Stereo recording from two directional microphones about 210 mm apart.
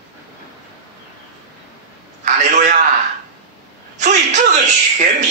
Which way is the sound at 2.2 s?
35° right (ahead or behind).